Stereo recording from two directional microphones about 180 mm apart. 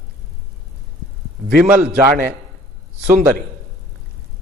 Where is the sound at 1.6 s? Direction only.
10° right (ahead or behind).